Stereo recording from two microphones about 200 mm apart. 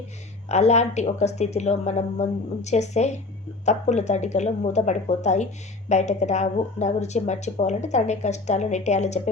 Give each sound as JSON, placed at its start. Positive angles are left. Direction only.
{"t": 0.4, "sound": "a woman's voice", "side_deg": 35}